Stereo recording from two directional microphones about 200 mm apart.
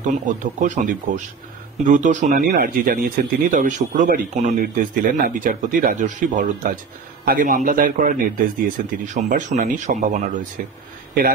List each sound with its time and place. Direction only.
0.0 s a man's voice: 40° right (ahead or behind)